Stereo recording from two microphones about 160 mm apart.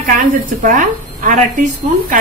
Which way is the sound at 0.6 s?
55° right (ahead or behind).